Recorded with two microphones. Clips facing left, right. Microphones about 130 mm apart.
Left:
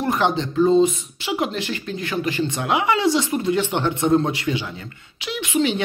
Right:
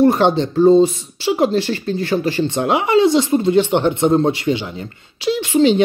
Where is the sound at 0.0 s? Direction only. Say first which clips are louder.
Right 8 dB; 30° right (ahead or behind).